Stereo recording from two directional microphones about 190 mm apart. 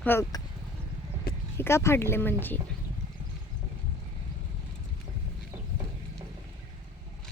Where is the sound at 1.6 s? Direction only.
15° left (ahead or behind).